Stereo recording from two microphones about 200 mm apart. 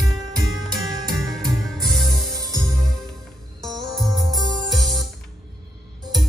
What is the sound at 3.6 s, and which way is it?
Music, centre (ahead or behind).